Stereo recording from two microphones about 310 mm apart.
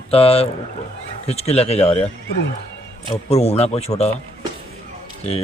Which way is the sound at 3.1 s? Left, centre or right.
Centre.